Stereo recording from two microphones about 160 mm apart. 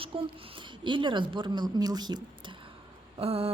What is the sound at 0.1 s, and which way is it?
A woman's voice, 35° right (ahead or behind).